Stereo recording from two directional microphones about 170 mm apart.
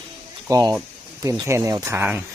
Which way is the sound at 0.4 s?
15° right (ahead or behind).